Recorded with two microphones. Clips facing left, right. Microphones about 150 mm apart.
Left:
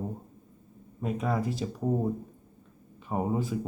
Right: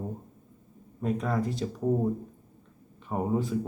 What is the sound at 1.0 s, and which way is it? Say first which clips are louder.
Speech: right 1 dB; 5° left (ahead or behind).